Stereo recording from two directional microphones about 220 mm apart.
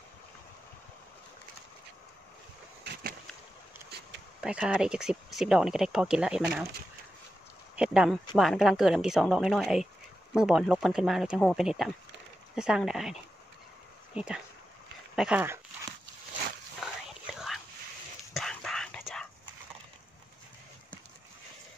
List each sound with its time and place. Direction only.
2.8 s a sound: 45° right (ahead or behind)
4.4 s speech: 5° right (ahead or behind)
7.7 s speech: 5° right (ahead or behind)
14.1 s speech: 5° right (ahead or behind)
16.8 s whispering: centre (ahead or behind)